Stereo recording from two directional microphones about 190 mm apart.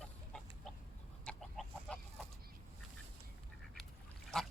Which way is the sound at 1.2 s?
5° left (ahead or behind).